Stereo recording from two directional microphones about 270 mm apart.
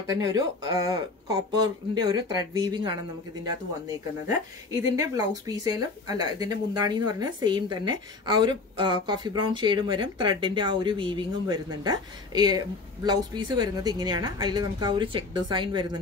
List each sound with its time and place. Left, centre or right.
0.2 s a woman's voice: centre
4.9 s a woman's voice: centre